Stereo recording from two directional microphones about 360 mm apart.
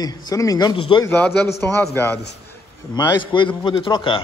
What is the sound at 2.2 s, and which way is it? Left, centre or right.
Speech, left.